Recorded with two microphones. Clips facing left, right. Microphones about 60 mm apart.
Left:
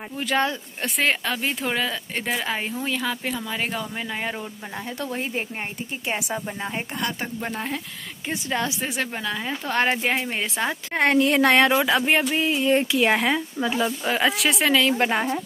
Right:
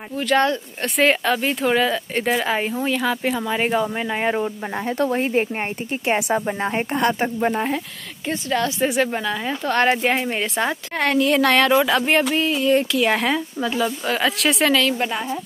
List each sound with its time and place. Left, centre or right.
0.2 s speech: centre
3.3 s speech: right
4.4 s speech: right
6.0 s speech: right
6.9 s speech: right
8.3 s speech: centre
8.8 s speech: centre
11.0 s speech: left
11.8 s speech: centre
12.6 s speech: left
13.1 s speech: centre
14.4 s speech: centre
15.0 s a woman's voice: left